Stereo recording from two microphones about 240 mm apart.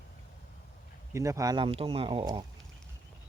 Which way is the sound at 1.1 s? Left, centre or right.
Centre.